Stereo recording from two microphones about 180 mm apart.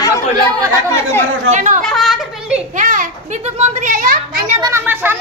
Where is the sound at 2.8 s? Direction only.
45° right (ahead or behind).